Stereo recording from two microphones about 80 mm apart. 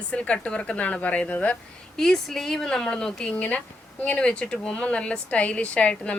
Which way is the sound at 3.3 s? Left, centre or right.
Centre.